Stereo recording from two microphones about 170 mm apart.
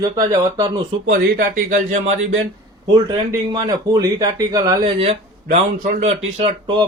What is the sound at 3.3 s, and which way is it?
A man's voice, 20° right (ahead or behind).